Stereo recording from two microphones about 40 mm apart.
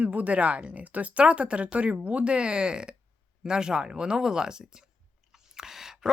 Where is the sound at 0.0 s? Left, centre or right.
Right.